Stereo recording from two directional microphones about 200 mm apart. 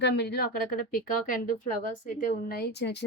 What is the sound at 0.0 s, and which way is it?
Speech, 55° left (ahead or behind).